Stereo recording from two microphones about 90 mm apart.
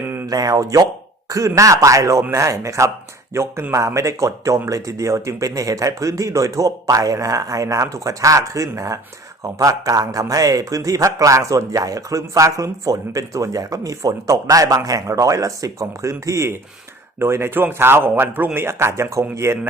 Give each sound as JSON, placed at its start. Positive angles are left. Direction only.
{"t": 0.3, "sound": "a man's voice", "side_deg": -45}